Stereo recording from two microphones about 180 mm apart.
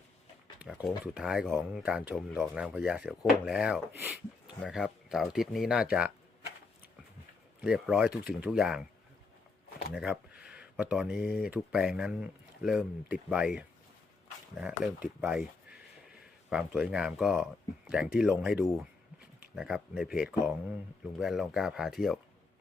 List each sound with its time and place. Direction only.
0.6 s speech: 5° right (ahead or behind)
7.6 s speech: 5° right (ahead or behind)
9.9 s a sound: 5° right (ahead or behind)
11.2 s speech: 55° left (ahead or behind)
11.4 s speech: 5° right (ahead or behind)